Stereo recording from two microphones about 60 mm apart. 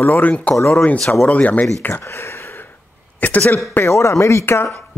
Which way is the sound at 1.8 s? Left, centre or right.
Left.